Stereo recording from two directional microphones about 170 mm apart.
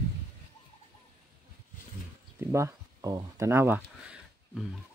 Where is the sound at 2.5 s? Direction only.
20° right (ahead or behind).